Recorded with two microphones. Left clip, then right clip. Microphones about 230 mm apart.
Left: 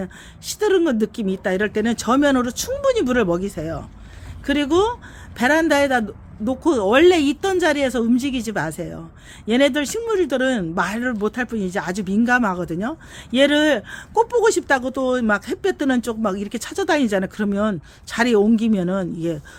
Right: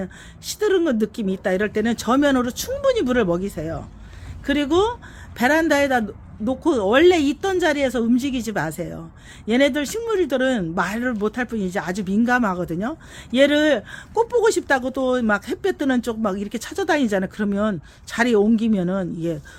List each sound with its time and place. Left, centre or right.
0.0 s speech: centre